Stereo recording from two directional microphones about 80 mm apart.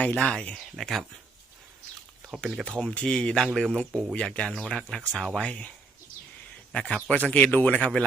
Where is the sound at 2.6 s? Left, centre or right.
Centre.